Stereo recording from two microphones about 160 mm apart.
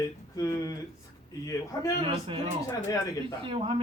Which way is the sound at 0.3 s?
20° left (ahead or behind).